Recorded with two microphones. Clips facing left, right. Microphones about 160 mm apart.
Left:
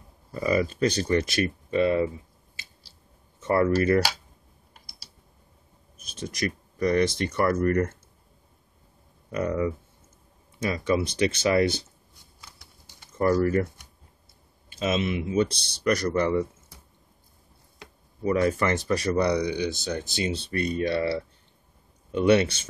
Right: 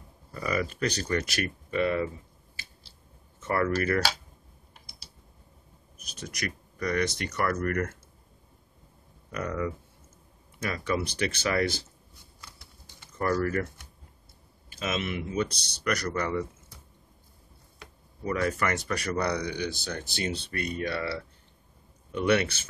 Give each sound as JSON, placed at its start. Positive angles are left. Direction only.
{"t": 0.3, "sound": "speech", "side_deg": 25}
{"t": 3.4, "sound": "speech", "side_deg": 25}
{"t": 6.1, "sound": "speech", "side_deg": 25}
{"t": 9.3, "sound": "speech", "side_deg": 25}
{"t": 13.2, "sound": "speech", "side_deg": 25}
{"t": 15.3, "sound": "speech", "side_deg": 30}
{"t": 18.2, "sound": "speech", "side_deg": 25}
{"t": 20.5, "sound": "speech", "side_deg": 30}